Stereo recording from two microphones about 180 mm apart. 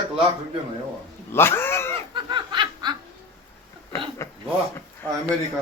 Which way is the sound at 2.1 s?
25° right (ahead or behind).